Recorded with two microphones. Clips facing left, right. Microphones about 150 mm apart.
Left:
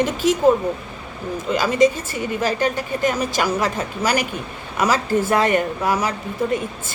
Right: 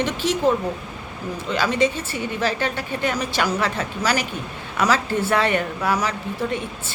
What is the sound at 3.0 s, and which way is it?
Speech, 45° left (ahead or behind).